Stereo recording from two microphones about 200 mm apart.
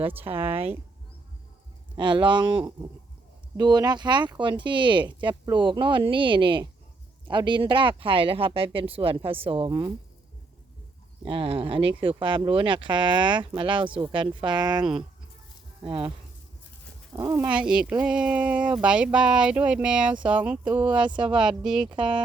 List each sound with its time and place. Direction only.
0.1 s speech: 10° right (ahead or behind)
0.5 s speech: 30° right (ahead or behind)
2.0 s speech: 25° right (ahead or behind)
11.3 s speech: 25° right (ahead or behind)
15.9 s speech: 25° right (ahead or behind)
17.2 s speech: 15° right (ahead or behind)